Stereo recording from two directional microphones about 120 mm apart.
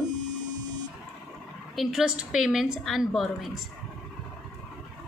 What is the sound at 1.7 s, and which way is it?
A woman's voice, centre (ahead or behind).